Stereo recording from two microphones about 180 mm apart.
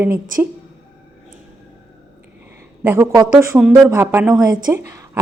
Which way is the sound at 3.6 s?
5° right (ahead or behind).